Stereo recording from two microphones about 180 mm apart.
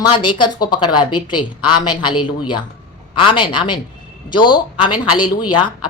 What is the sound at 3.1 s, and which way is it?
Speech, 30° left (ahead or behind).